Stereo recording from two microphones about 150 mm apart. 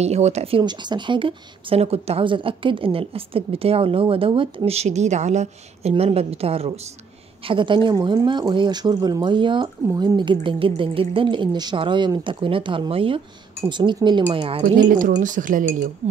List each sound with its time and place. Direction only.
0.0 s speech: 45° right (ahead or behind)
14.8 s speech: 65° right (ahead or behind)
16.0 s speech: 50° right (ahead or behind)